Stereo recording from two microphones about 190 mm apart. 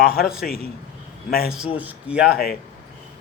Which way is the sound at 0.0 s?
55° left (ahead or behind).